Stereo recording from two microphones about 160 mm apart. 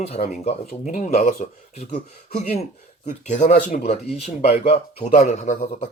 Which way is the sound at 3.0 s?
45° left (ahead or behind).